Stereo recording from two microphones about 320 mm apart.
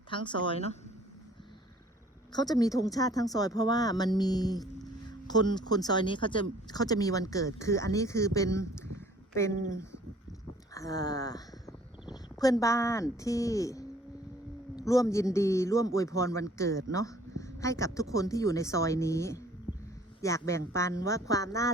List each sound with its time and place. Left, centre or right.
0.1 s speech: centre
2.3 s speech: centre
10.8 s speech: centre